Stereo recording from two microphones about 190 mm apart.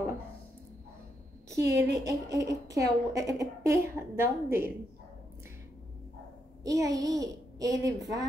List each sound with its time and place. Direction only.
1.7 s speech: 15° right (ahead or behind)
6.6 s speech: 15° right (ahead or behind)